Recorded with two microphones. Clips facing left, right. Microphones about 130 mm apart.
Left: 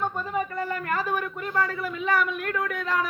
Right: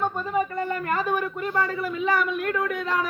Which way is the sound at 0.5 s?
25° right (ahead or behind).